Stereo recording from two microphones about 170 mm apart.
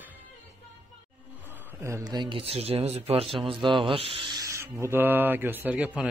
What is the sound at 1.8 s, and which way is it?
Speech, 20° right (ahead or behind).